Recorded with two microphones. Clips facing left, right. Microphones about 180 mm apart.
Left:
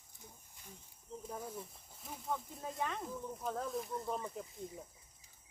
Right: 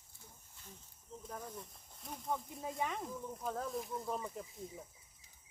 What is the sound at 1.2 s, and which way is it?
Speech, 10° left (ahead or behind).